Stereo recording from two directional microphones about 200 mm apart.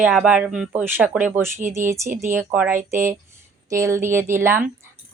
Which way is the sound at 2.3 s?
10° right (ahead or behind).